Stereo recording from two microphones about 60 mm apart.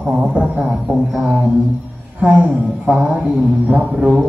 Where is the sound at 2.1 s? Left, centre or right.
Centre.